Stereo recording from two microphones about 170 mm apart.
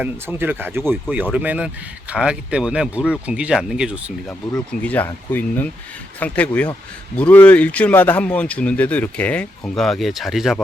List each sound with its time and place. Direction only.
0.0 s speech: 10° right (ahead or behind)
4.3 s speech: 5° left (ahead or behind)